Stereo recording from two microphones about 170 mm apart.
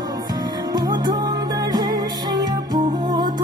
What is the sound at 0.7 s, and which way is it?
Music, 25° right (ahead or behind).